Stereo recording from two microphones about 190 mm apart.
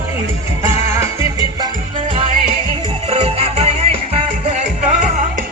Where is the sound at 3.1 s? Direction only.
30° right (ahead or behind).